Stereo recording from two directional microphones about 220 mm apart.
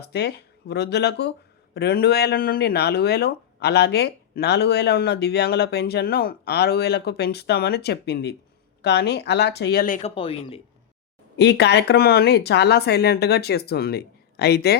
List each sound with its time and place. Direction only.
0.0 s speech: 50° left (ahead or behind)
11.3 s speech: 50° left (ahead or behind)